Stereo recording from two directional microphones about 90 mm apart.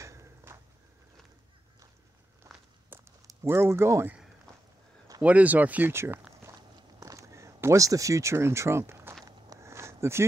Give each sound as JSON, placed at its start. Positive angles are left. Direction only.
{"t": 0.0, "sound": "a sound", "side_deg": -35}
{"t": 2.4, "sound": "walk", "side_deg": -35}
{"t": 2.9, "sound": "a sound", "side_deg": -30}
{"t": 5.2, "sound": "speech", "side_deg": -15}
{"t": 7.0, "sound": "speech", "side_deg": -40}
{"t": 9.2, "sound": "walk", "side_deg": -35}